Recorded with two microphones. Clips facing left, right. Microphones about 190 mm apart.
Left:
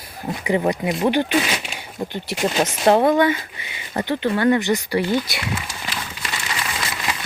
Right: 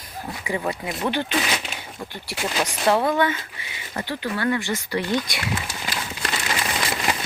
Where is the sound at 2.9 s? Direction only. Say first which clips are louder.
Left 5 dB; 50° left (ahead or behind).